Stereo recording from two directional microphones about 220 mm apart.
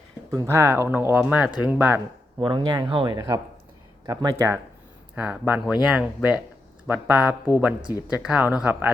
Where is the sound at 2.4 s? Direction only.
20° right (ahead or behind).